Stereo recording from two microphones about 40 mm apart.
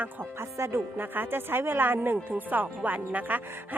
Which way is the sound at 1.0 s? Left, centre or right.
Right.